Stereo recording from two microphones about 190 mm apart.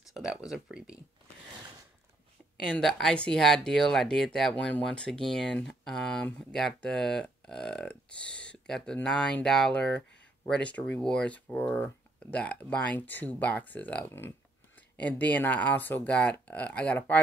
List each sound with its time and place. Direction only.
0.1 s speech: 5° right (ahead or behind)
2.6 s speech: 5° left (ahead or behind)